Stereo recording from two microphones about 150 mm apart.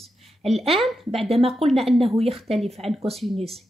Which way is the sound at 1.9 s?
40° right (ahead or behind).